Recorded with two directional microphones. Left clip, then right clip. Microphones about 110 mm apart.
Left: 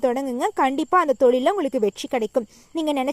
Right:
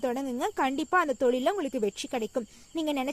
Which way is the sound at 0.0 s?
45° left (ahead or behind).